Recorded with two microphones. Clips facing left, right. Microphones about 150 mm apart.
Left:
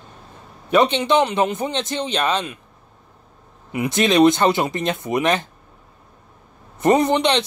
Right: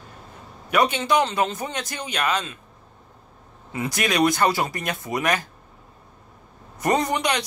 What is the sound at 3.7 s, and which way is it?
A man's voice, 25° left (ahead or behind).